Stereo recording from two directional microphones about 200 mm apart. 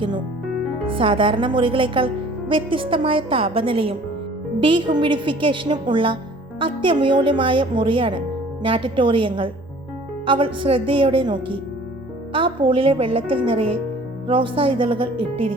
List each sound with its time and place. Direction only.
0.9 s a woman's voice: 25° right (ahead or behind)